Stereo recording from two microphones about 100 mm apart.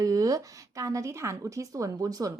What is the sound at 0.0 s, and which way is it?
A woman's voice, 35° right (ahead or behind).